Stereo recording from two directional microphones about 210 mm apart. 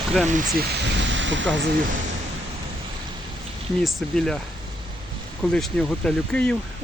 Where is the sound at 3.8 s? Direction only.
Centre (ahead or behind).